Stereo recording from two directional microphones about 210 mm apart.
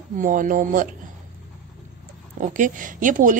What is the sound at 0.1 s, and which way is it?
Speech, 40° right (ahead or behind).